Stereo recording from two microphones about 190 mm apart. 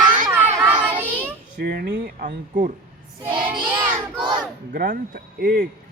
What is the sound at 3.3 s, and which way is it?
Child singing, 25° right (ahead or behind).